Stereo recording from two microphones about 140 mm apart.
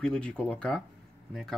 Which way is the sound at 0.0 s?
5° left (ahead or behind).